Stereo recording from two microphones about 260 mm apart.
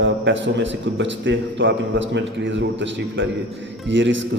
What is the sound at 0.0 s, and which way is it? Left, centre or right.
A man's voice, right.